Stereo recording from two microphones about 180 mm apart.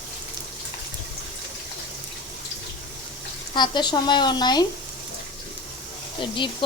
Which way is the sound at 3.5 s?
25° left (ahead or behind).